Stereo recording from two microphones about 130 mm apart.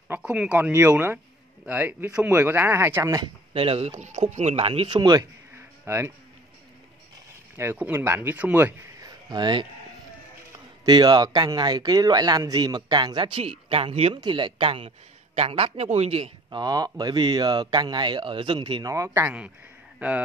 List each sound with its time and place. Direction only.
0.1 s speech: 5° right (ahead or behind); by 3.3 s 25° right (ahead or behind)
3.5 s speech: 45° right (ahead or behind)
5.9 s speech: 20° right (ahead or behind)
7.5 s speech: 15° right (ahead or behind)
9.0 s a sound: 35° right (ahead or behind)
10.9 s speech: 35° right (ahead or behind); by 14.1 s 50° right (ahead or behind)
14.1 s speech: 40° right (ahead or behind)
16.4 s speech: 30° right (ahead or behind)
18.9 s speech: 20° right (ahead or behind)